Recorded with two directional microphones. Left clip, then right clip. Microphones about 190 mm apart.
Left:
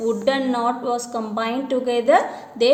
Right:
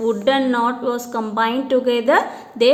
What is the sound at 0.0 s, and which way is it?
A woman's voice, 35° right (ahead or behind).